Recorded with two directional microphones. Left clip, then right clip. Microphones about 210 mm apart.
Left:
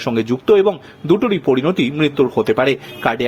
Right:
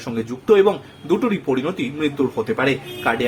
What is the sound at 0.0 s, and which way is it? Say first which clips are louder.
Speech: left 8 dB; 35° left (ahead or behind).